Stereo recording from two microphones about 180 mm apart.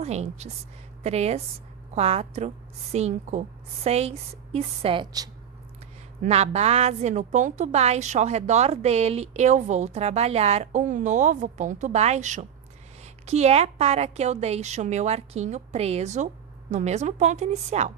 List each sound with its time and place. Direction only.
0.0 s a woman's voice: 35° right (ahead or behind)
6.2 s a woman's voice: 35° right (ahead or behind)